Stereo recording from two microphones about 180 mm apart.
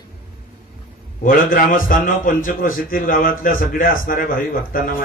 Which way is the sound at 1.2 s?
50° left (ahead or behind).